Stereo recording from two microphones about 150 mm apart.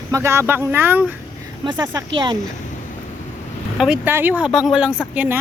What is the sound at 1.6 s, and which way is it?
Speech, 25° right (ahead or behind).